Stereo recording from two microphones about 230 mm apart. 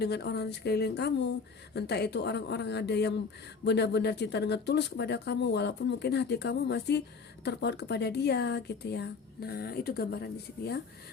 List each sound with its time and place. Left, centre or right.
0.0 s speech: left